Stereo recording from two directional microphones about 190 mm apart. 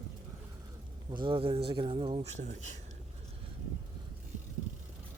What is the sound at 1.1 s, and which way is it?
Speech, 25° right (ahead or behind).